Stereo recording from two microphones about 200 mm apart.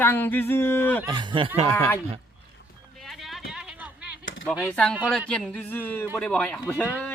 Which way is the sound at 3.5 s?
5° right (ahead or behind).